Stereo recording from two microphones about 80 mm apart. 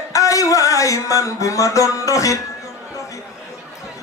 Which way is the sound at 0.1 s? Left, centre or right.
Left.